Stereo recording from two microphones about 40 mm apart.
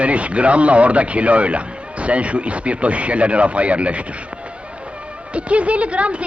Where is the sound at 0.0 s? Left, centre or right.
Right.